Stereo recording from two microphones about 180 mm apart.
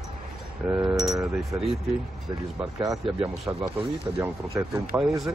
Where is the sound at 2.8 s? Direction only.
20° right (ahead or behind).